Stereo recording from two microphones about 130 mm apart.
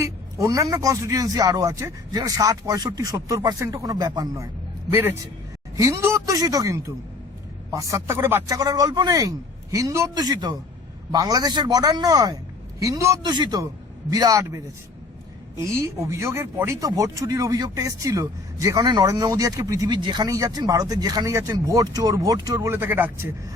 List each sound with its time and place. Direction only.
0.0 s speech: 25° right (ahead or behind)